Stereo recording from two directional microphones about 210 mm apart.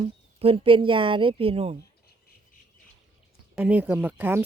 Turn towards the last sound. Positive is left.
turn(degrees=-10)  # may be behind; listen again after turning